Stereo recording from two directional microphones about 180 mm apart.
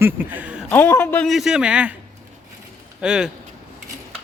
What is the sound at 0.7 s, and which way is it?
Speech, 10° left (ahead or behind).